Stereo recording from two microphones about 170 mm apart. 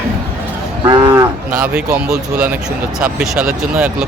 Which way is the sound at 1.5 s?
5° right (ahead or behind).